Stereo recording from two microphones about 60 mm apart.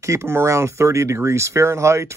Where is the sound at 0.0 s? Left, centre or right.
Right.